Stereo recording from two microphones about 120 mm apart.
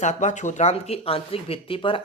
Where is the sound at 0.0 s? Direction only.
75° left (ahead or behind).